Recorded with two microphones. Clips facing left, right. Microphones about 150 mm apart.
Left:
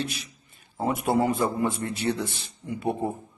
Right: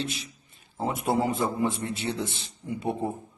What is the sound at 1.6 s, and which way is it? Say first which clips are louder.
Speech: left 2 dB; 25° right (ahead or behind).